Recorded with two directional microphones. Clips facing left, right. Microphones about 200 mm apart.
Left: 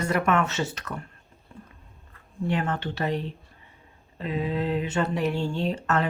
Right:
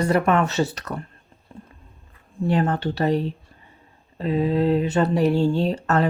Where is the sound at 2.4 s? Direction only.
35° right (ahead or behind).